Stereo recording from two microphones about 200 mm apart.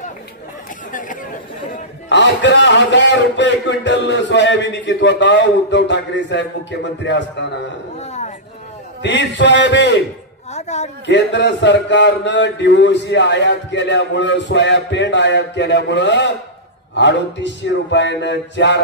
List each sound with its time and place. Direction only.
2.0 s a man's voice: 60° left (ahead or behind)
8.0 s a sound: 35° left (ahead or behind)
9.0 s a man's voice: 60° left (ahead or behind)
10.5 s a man's voice: 35° left (ahead or behind)
11.1 s a man's voice: 60° left (ahead or behind)